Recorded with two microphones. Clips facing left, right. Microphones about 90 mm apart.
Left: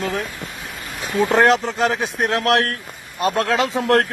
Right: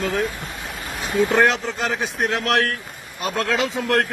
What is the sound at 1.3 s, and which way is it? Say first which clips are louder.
A man's voice: left 6 dB; 45° left (ahead or behind).